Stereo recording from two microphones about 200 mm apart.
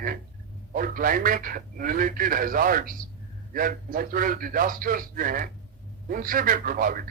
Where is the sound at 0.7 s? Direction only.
45° right (ahead or behind).